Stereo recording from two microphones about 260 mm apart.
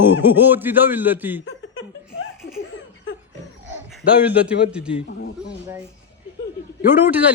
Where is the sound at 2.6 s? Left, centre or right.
Left.